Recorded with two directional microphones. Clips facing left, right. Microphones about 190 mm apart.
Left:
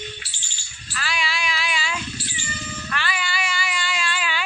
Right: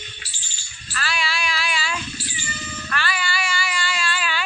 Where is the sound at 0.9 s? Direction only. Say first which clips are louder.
Right 1 dB; 15° left (ahead or behind).